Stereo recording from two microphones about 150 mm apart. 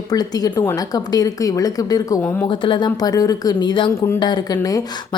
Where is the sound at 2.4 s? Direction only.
35° left (ahead or behind).